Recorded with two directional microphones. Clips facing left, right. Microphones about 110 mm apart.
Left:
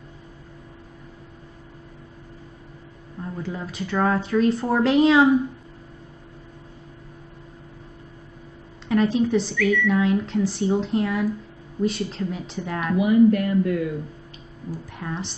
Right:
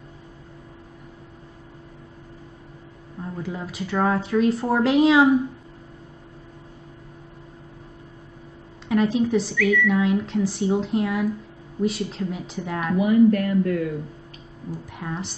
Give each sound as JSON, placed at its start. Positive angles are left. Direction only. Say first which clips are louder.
{"t": 3.2, "sound": "speech", "louder": "even", "side_deg": -10}
{"t": 8.8, "sound": "speech", "louder": "even", "side_deg": -5}
{"t": 13.0, "sound": "speech", "louder": "even", "side_deg": 20}
{"t": 14.9, "sound": "speech", "louder": "even", "side_deg": -5}